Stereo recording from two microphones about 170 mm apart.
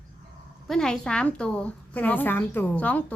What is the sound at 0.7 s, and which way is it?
A woman's voice, 5° left (ahead or behind).